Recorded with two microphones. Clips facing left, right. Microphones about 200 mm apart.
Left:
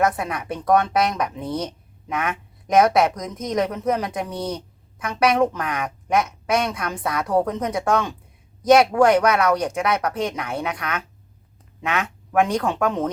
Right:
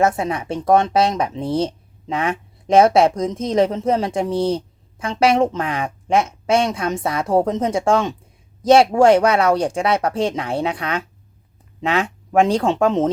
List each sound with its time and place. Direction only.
0.0 s speech: 25° right (ahead or behind)